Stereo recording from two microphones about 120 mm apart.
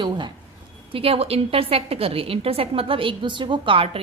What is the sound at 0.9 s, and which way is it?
A woman's voice, 55° right (ahead or behind).